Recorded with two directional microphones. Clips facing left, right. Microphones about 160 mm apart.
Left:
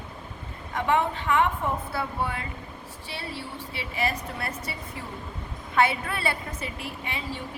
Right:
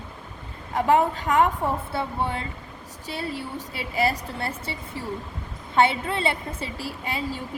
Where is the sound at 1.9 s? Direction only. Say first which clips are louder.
Right 2 dB; 25° right (ahead or behind).